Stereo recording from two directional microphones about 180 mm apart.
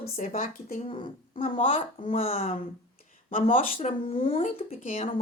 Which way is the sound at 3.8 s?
30° left (ahead or behind).